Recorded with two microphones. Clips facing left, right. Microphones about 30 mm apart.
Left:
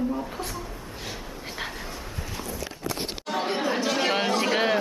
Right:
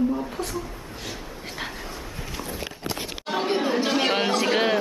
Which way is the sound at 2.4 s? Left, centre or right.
Right.